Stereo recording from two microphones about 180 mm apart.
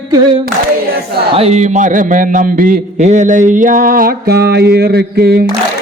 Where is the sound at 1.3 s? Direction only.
35° right (ahead or behind).